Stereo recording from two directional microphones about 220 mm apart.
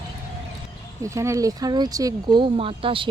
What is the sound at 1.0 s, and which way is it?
Speech, 15° right (ahead or behind).